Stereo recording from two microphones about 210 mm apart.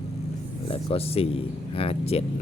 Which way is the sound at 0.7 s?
30° left (ahead or behind).